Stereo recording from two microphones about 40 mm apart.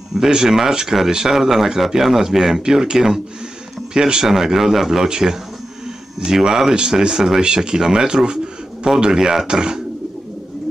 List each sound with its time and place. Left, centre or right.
0.1 s speech: centre